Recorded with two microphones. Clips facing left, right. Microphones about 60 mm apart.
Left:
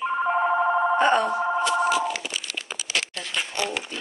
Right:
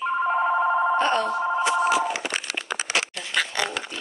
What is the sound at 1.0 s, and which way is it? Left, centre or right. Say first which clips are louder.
Speech: left 2 dB; centre.